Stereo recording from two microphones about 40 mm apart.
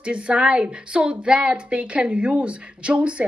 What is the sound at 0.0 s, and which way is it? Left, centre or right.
A woman's voice, right.